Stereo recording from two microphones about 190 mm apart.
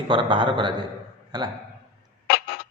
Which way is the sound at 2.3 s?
60° left (ahead or behind).